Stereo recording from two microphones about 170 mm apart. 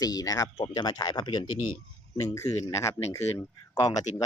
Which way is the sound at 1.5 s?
50° left (ahead or behind).